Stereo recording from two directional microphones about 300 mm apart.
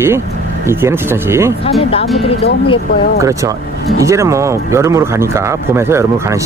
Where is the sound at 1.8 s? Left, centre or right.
Centre.